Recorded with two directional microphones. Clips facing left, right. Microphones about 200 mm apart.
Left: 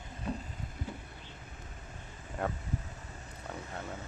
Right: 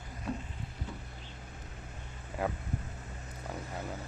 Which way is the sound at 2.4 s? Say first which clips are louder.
Right 1 dB; 5° right (ahead or behind).